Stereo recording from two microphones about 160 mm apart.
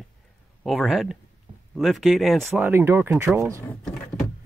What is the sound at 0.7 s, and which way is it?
Speech, centre (ahead or behind).